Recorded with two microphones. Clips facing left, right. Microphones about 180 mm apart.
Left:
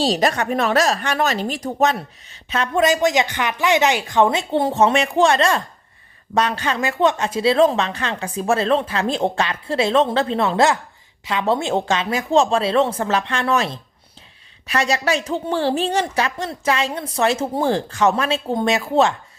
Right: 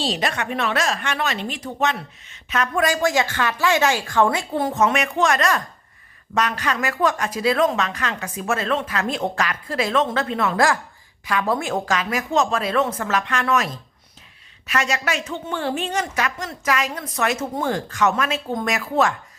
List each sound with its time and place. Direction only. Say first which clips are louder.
0.0 s a woman's voice: left 6 dB; 40° left (ahead or behind)